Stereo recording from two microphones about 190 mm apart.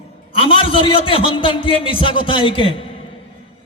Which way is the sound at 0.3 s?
30° left (ahead or behind).